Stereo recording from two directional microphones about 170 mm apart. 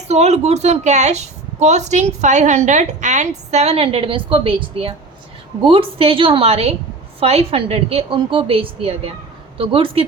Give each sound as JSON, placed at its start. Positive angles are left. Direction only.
{"t": 0.1, "sound": "a woman's voice", "side_deg": -40}